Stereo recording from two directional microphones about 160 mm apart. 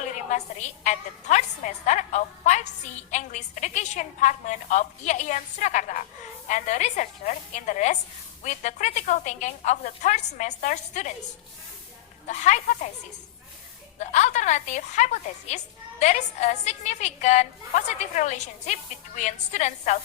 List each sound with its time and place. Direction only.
0.3 s a woman's voice: 50° left (ahead or behind)
12.3 s a woman's voice: 50° left (ahead or behind)
14.0 s a woman's voice: 45° left (ahead or behind)